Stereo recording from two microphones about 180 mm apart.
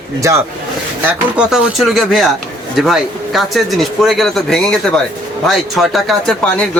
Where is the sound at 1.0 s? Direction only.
5° right (ahead or behind).